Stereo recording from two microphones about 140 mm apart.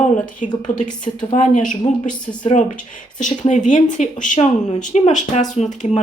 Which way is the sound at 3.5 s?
60° left (ahead or behind).